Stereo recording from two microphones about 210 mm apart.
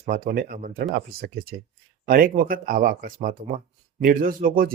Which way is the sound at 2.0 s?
40° right (ahead or behind).